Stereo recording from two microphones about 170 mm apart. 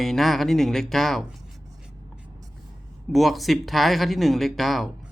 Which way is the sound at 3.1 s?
Centre (ahead or behind).